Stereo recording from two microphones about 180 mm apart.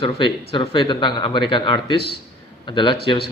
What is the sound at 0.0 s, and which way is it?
Speech, 30° left (ahead or behind).